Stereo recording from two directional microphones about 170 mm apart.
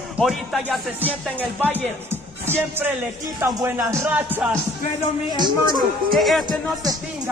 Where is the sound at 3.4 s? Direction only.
15° right (ahead or behind).